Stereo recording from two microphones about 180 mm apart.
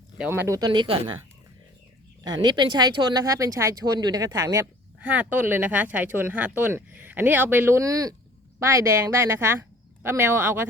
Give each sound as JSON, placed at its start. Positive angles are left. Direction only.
{"t": 0.2, "sound": "speech", "side_deg": -10}
{"t": 2.3, "sound": "speech", "side_deg": -25}
{"t": 5.0, "sound": "speech", "side_deg": -5}